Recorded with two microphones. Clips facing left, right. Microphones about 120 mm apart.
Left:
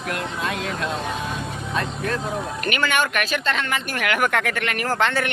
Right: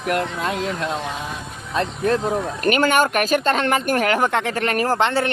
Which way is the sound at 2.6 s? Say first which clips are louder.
Right 6 dB; 40° right (ahead or behind).